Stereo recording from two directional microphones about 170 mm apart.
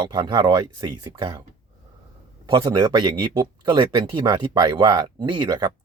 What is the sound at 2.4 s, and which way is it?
Speech, 25° right (ahead or behind).